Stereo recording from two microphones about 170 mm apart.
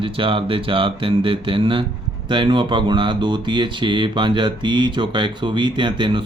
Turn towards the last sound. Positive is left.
turn(degrees=-30)  # may be behind; listen again after turning